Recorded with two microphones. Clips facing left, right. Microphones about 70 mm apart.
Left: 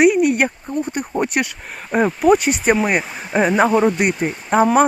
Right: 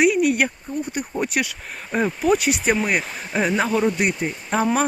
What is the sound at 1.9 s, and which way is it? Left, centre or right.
Speech, left.